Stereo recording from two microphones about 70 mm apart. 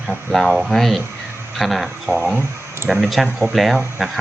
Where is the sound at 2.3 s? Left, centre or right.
Right.